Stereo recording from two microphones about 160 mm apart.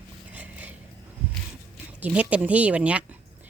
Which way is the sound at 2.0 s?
10° right (ahead or behind).